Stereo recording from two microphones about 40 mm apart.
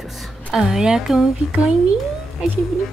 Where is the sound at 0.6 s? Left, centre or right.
Centre.